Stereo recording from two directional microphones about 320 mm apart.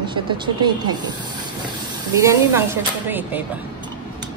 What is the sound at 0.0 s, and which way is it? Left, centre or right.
Speech, centre.